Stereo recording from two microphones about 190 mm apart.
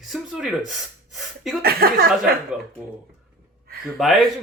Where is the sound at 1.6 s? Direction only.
55° right (ahead or behind).